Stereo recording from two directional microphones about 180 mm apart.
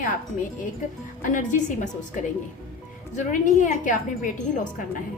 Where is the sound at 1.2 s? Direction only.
45° left (ahead or behind).